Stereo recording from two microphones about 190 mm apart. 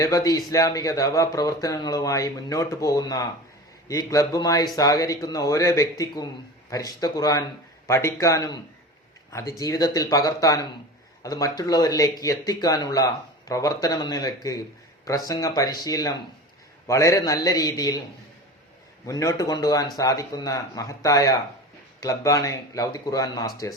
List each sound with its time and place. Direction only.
0.0 s speech: 20° left (ahead or behind)
19.0 s speech: 15° left (ahead or behind)